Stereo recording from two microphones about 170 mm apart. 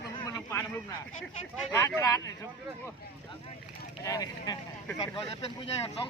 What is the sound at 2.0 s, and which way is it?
Speech, 20° left (ahead or behind).